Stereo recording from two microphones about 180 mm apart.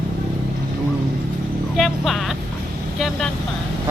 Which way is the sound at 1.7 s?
Centre (ahead or behind).